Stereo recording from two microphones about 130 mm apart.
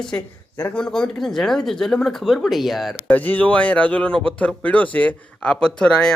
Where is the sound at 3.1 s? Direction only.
10° left (ahead or behind).